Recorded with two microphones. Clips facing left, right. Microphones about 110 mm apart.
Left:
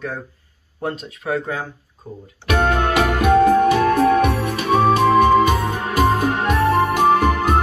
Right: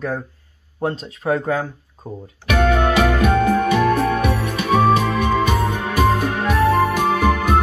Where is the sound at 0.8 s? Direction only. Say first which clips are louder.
Right 3 dB; 30° right (ahead or behind).